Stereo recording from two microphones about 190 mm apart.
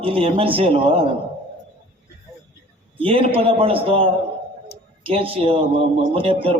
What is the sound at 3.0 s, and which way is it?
A man's voice, 30° right (ahead or behind).